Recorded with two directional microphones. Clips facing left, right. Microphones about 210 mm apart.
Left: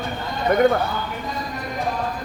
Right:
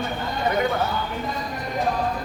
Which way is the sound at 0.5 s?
50° left (ahead or behind).